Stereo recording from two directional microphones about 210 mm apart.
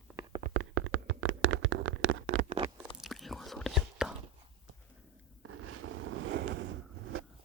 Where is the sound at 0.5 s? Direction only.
65° right (ahead or behind).